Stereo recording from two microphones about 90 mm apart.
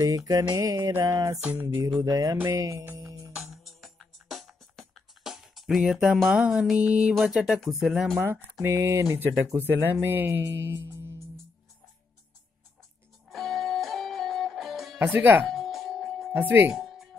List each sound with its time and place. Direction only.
0.0 s mantra: 45° right (ahead or behind)
1.4 s speech: 20° right (ahead or behind)
2.0 s mantra: 40° right (ahead or behind)
2.4 s music: 35° right (ahead or behind)
3.5 s music: centre (ahead or behind)
6.2 s speech: 5° right (ahead or behind)
8.5 s speech: 35° right (ahead or behind)
10.7 s music: 25° right (ahead or behind)
13.3 s music: centre (ahead or behind)
15.0 s speech: 20° right (ahead or behind)
15.4 s music: centre (ahead or behind)
16.3 s speech: 25° right (ahead or behind)
16.7 s music: 5° right (ahead or behind)